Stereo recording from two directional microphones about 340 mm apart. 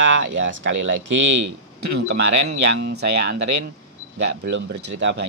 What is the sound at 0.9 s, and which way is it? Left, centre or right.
Speech, right.